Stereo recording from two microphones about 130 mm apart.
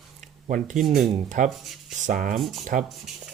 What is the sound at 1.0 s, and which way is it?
Speech, 70° right (ahead or behind).